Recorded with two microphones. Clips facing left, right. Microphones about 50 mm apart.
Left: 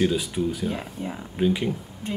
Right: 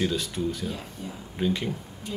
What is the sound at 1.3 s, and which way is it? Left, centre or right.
Speech, centre.